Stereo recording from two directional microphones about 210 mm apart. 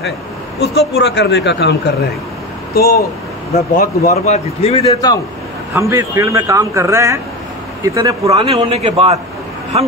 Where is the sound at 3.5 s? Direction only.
45° left (ahead or behind).